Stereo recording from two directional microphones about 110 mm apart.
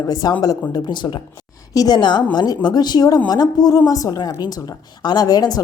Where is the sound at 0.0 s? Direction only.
35° left (ahead or behind).